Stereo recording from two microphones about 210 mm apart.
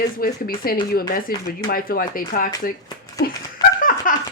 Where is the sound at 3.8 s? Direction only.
40° left (ahead or behind).